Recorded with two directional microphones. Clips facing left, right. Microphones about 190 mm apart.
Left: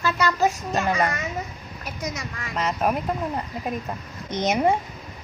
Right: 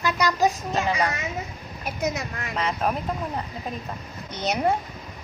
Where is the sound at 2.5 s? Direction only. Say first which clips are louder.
Left 2 dB; 5° left (ahead or behind).